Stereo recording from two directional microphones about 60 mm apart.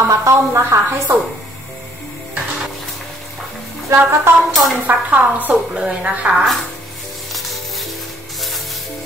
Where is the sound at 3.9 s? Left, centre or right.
Right.